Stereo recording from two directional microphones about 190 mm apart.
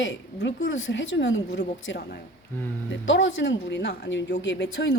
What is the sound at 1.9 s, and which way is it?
Speech, 55° left (ahead or behind).